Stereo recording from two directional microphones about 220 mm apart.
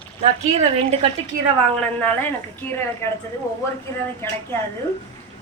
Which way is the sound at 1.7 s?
5° left (ahead or behind).